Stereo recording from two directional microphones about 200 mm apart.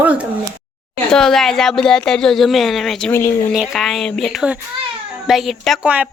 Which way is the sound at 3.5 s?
5° right (ahead or behind).